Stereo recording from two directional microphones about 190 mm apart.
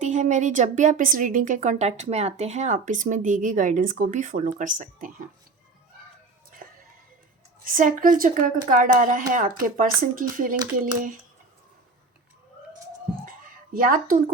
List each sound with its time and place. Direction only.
0.0 s a woman's voice: 40° right (ahead or behind)
7.6 s a woman's voice: 45° right (ahead or behind)
13.7 s a woman's voice: 45° right (ahead or behind)